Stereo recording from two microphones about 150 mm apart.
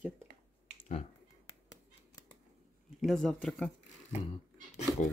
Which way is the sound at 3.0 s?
Centre (ahead or behind).